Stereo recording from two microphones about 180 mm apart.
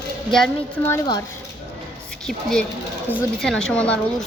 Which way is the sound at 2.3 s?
Centre (ahead or behind).